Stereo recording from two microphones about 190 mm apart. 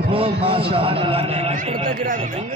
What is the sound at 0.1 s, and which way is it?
A man's voice, 30° right (ahead or behind).